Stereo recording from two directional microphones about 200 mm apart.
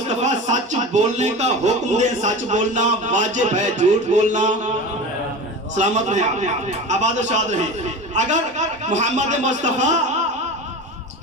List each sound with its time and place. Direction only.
0.2 s speech: 35° right (ahead or behind)
5.7 s speech: 40° right (ahead or behind)